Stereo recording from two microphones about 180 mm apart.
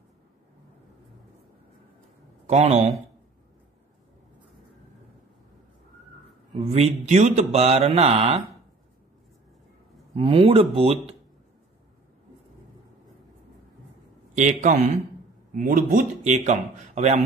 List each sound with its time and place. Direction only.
2.4 s speech: 35° right (ahead or behind)
6.6 s speech: 35° right (ahead or behind)
10.1 s speech: 30° right (ahead or behind)
14.3 s a man's voice: 45° right (ahead or behind)